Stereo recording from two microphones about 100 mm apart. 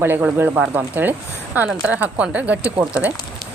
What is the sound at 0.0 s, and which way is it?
A woman's voice, 20° right (ahead or behind).